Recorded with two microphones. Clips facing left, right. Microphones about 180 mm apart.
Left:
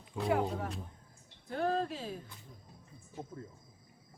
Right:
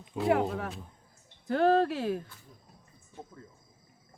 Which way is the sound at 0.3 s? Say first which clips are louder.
Right 5 dB; 70° right (ahead or behind).